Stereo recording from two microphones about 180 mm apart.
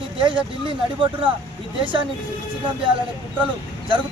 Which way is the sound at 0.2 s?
30° right (ahead or behind).